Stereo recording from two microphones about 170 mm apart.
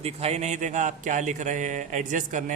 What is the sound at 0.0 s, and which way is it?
Speech, 35° right (ahead or behind).